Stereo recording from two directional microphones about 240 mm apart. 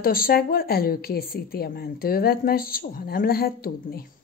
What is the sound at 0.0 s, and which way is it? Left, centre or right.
Speech, left.